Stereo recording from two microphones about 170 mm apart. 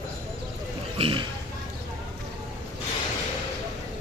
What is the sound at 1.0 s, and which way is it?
Speech, 30° right (ahead or behind).